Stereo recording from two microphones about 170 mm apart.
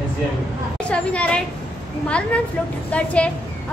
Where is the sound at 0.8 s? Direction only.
5° left (ahead or behind).